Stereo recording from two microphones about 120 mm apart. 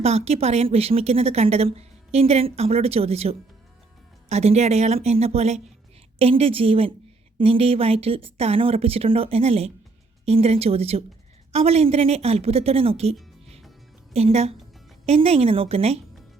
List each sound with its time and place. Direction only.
0.0 s a woman's voice: 60° right (ahead or behind)
6.1 s a woman's voice: 55° right (ahead or behind)